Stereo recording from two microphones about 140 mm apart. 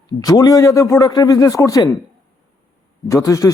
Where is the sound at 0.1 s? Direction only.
25° left (ahead or behind).